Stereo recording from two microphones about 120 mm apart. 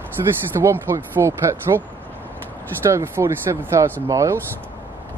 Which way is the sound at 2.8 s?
20° right (ahead or behind).